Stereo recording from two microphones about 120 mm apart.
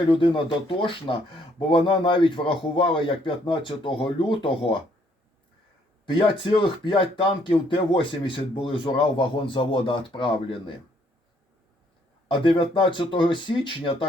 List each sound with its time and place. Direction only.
0.1 s speech: 45° left (ahead or behind)
6.1 s speech: 45° left (ahead or behind)
12.3 s speech: 45° left (ahead or behind)